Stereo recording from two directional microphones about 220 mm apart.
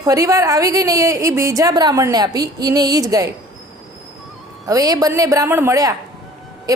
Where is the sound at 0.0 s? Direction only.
15° right (ahead or behind).